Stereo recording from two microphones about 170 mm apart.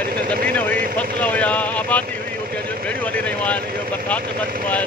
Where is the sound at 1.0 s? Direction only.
10° left (ahead or behind).